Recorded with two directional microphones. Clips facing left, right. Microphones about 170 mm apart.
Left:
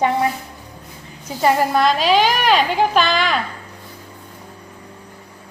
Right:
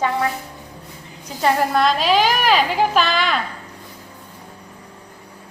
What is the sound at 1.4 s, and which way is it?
A woman's voice, 5° left (ahead or behind).